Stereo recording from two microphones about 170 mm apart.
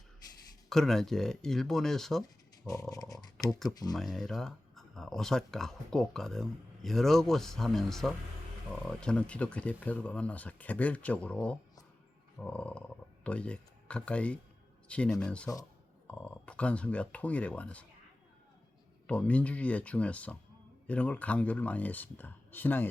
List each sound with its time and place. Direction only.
0.7 s speech: centre (ahead or behind)
2.9 s speech: 20° left (ahead or behind)
3.9 s speech: centre (ahead or behind)
19.0 s speech: 5° left (ahead or behind)